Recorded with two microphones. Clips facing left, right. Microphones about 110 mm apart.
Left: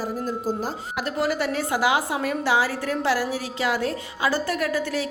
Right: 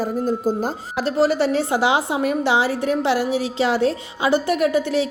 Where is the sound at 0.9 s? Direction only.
30° right (ahead or behind).